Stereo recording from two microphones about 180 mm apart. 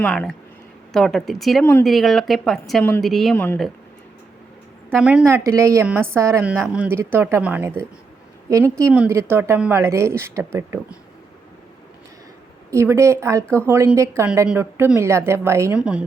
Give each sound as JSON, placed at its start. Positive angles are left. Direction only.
{"t": 0.0, "sound": "speech", "side_deg": 5}
{"t": 4.9, "sound": "speech", "side_deg": -5}
{"t": 5.2, "sound": "a woman's voice", "side_deg": -15}
{"t": 12.7, "sound": "a woman's voice", "side_deg": -15}